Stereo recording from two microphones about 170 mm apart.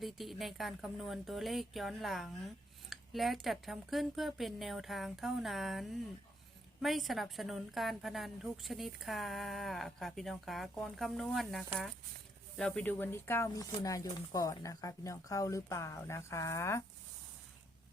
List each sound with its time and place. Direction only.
0.0 s a woman's voice: centre (ahead or behind); by 16.8 s 15° left (ahead or behind)